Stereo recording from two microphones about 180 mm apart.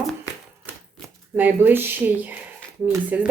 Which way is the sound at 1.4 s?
10° right (ahead or behind).